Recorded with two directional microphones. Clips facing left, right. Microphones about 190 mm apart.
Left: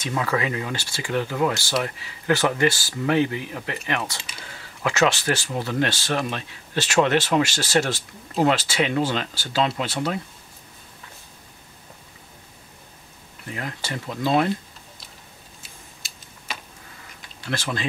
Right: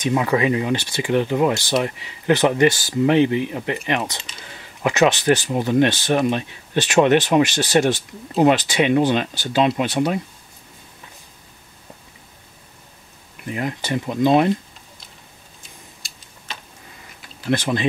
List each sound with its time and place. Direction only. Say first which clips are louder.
0.0 s speech: right 6 dB; 20° right (ahead or behind)
13.5 s speech: right 7 dB; 20° right (ahead or behind)
15.6 s a sound: right 1 dB; 5° left (ahead or behind)
17.5 s speech: right 8 dB; 20° right (ahead or behind)